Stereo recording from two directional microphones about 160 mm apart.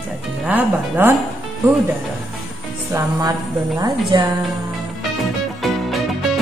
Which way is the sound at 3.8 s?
25° right (ahead or behind).